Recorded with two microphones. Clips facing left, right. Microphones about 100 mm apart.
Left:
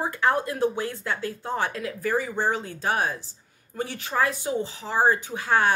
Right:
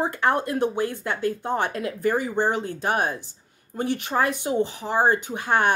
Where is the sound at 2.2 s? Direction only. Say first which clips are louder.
Right 3 dB; 20° right (ahead or behind).